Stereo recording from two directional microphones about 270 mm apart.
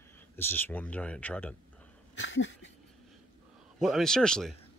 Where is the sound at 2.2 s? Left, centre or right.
Left.